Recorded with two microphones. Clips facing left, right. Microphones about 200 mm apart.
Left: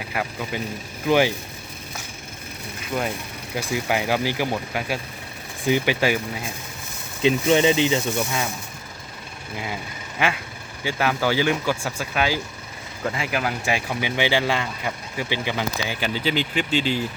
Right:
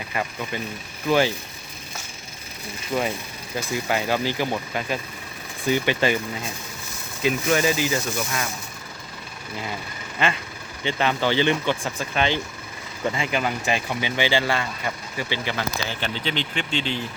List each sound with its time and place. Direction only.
0.1 s speech: 5° left (ahead or behind)
2.9 s speech: centre (ahead or behind)
3.5 s speech: 10° left (ahead or behind)
7.2 s speech: 25° left (ahead or behind)
10.2 s speech: 10° left (ahead or behind)